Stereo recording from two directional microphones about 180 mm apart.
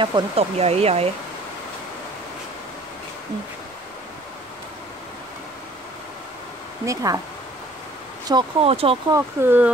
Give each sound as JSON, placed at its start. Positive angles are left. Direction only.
{"t": 0.0, "sound": "speech", "side_deg": -30}
{"t": 6.9, "sound": "speech", "side_deg": -20}
{"t": 8.3, "sound": "speech", "side_deg": -30}
{"t": 9.1, "sound": "speech", "side_deg": -10}